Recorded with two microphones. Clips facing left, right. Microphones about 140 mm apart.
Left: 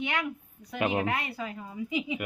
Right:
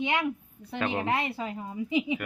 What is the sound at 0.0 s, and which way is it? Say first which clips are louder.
A woman's voice: right 4 dB; 25° right (ahead or behind).